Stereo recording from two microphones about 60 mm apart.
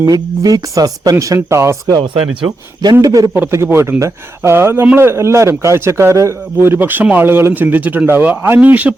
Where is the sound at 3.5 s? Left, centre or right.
Right.